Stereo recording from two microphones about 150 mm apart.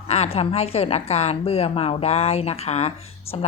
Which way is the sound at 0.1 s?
45° left (ahead or behind).